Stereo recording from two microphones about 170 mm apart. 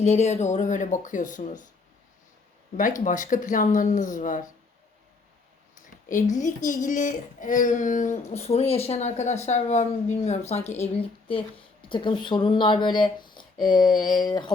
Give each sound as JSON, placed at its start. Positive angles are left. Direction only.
{"t": 0.0, "sound": "speech", "side_deg": 40}
{"t": 2.7, "sound": "speech", "side_deg": 50}
{"t": 5.7, "sound": "a woman's voice", "side_deg": 50}